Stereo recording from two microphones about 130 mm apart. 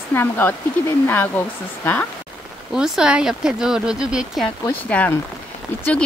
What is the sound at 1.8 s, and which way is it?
Speech, 10° left (ahead or behind).